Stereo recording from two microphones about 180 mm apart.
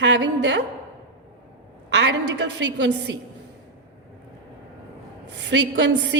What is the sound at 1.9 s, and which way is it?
A woman's voice, 75° right (ahead or behind).